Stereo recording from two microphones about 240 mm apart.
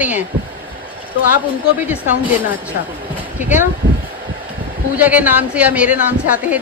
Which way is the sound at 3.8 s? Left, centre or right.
Right.